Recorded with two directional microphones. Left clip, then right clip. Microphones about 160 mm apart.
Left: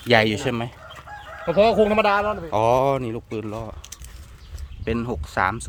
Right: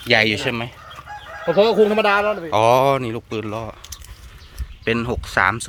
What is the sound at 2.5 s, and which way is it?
Speech, 10° left (ahead or behind).